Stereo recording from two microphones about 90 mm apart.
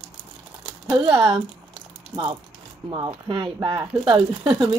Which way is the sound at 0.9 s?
80° right.